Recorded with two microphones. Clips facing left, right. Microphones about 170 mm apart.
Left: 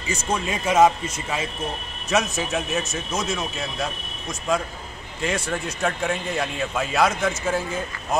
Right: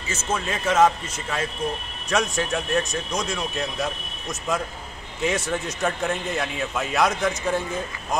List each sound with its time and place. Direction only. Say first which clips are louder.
0.3 s a man's voice: left 1 dB; 10° left (ahead or behind)